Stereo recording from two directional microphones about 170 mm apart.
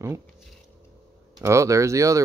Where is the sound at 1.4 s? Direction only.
20° right (ahead or behind).